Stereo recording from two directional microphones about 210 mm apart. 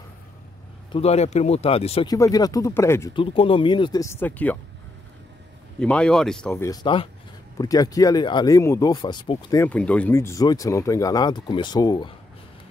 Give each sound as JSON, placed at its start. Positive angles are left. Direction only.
{"t": 0.9, "sound": "speech", "side_deg": 30}
{"t": 2.1, "sound": "speech", "side_deg": 15}
{"t": 5.8, "sound": "speech", "side_deg": 5}
{"t": 9.6, "sound": "speech", "side_deg": 5}